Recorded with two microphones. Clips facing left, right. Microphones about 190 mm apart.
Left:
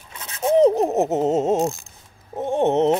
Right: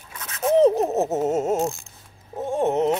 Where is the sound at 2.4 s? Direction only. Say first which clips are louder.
Left 3 dB; 20° left (ahead or behind).